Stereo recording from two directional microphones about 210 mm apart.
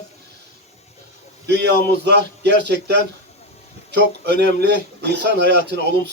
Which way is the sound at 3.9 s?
55° right (ahead or behind).